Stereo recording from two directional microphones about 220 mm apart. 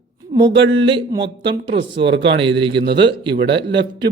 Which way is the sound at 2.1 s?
55° right (ahead or behind).